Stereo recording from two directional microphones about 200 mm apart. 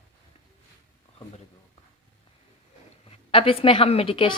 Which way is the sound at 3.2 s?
30° left (ahead or behind).